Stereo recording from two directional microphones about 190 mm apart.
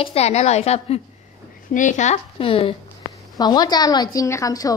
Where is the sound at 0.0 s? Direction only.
35° left (ahead or behind).